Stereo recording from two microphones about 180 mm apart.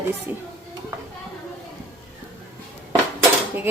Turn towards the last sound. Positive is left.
turn(degrees=-10)  # may be behind; listen again after turning